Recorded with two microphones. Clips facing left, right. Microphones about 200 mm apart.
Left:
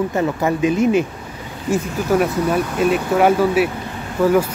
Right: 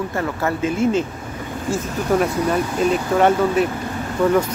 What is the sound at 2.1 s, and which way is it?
Speech, 5° left (ahead or behind).